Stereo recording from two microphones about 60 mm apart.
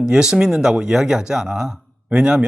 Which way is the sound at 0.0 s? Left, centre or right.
Centre.